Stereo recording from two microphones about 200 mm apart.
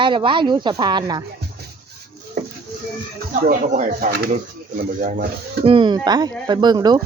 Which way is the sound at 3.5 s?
40° right (ahead or behind).